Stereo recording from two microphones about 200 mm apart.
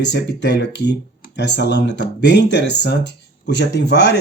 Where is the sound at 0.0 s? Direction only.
60° left (ahead or behind).